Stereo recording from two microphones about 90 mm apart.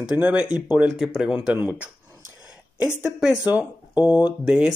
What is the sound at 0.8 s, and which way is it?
Speech, centre (ahead or behind).